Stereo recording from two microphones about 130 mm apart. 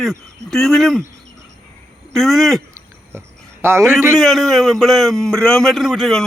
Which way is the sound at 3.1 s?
20° right (ahead or behind).